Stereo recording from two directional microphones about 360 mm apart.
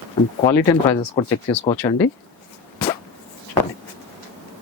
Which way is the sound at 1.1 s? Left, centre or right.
Centre.